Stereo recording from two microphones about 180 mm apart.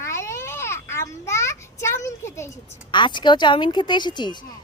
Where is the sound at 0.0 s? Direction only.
15° left (ahead or behind).